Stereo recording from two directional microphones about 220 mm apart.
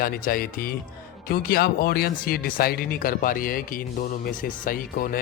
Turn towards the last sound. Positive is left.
turn(degrees=40)  # may be behind; listen again after turning